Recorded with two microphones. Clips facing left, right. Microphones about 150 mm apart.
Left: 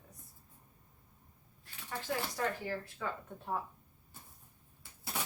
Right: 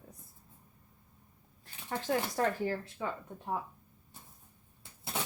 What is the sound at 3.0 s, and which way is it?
Speech, 20° right (ahead or behind).